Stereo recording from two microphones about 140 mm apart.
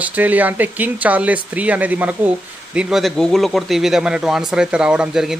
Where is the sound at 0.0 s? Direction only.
10° right (ahead or behind).